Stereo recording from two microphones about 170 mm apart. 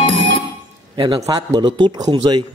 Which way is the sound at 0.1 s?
90° right.